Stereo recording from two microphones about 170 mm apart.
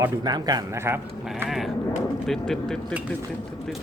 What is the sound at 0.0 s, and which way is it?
Speech, 25° right (ahead or behind).